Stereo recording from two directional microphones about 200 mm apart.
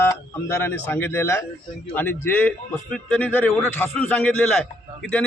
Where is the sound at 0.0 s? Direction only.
10° left (ahead or behind).